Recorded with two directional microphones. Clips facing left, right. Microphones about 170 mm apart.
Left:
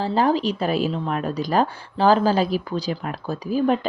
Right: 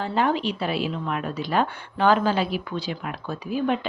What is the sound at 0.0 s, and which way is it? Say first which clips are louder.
A woman's voice: left 3 dB; 35° left (ahead or behind).